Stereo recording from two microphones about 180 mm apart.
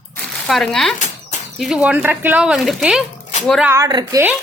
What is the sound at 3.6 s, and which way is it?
Speech, 15° right (ahead or behind).